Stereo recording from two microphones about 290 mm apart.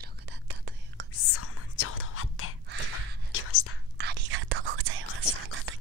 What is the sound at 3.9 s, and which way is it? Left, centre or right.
Whispering, right.